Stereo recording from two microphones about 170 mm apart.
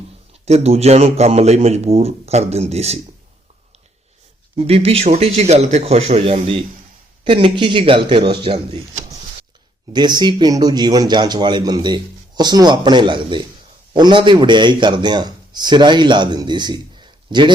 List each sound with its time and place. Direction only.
0.4 s speech: 40° right (ahead or behind)
4.5 s a man's voice: 35° right (ahead or behind)
9.9 s a man's voice: 25° right (ahead or behind)